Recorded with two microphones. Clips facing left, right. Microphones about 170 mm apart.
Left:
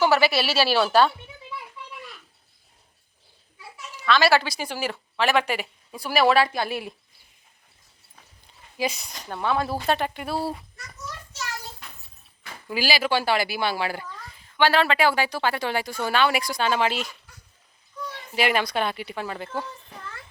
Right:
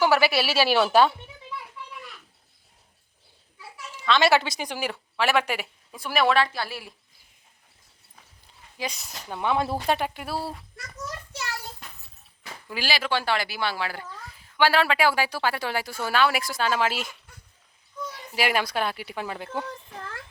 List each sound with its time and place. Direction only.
0.0 s speech: 10° right (ahead or behind)
3.9 s speech: 20° right (ahead or behind)
5.9 s speech: centre (ahead or behind); by 6.9 s 20° left (ahead or behind)
8.8 s a woman's voice: centre (ahead or behind)
9.4 s speech: 20° right (ahead or behind); by 10.4 s 5° right (ahead or behind)
12.6 s speech: 5° left (ahead or behind)
14.3 s a woman's voice: 5° right (ahead or behind)
18.3 s speech: 5° right (ahead or behind)